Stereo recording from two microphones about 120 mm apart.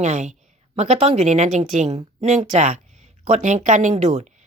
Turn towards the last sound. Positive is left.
turn(degrees=-70)  # may be behind; listen again after turning